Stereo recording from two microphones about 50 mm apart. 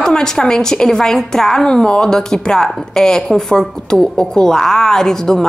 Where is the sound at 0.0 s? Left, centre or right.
Centre.